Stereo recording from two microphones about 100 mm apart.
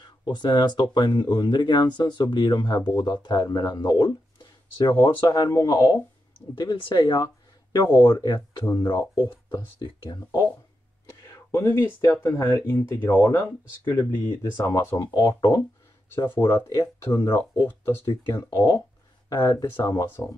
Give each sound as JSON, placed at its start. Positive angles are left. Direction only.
{"t": 0.2, "sound": "speech", "side_deg": 45}
{"t": 4.9, "sound": "speech", "side_deg": 40}
{"t": 6.5, "sound": "speech", "side_deg": 50}
{"t": 11.2, "sound": "speech", "side_deg": 30}
{"t": 16.4, "sound": "speech", "side_deg": 35}
{"t": 20.1, "sound": "speech", "side_deg": 20}